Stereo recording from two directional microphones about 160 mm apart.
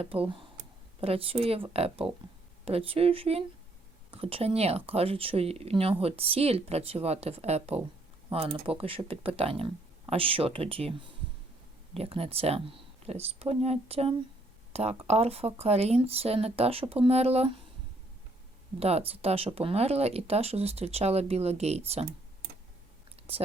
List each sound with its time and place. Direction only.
0.0 s speech: 35° right (ahead or behind)
18.8 s speech: 40° right (ahead or behind)